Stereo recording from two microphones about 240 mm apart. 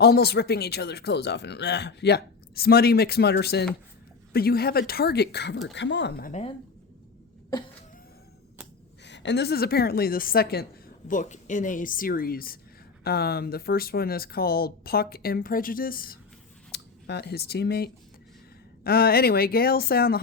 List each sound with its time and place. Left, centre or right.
0.0 s speech: left
7.5 s a sound: centre
9.0 s speech: left